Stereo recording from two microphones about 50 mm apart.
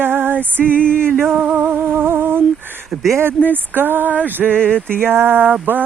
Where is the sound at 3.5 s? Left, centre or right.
Right.